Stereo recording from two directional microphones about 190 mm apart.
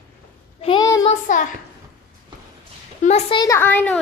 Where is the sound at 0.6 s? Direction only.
25° left (ahead or behind).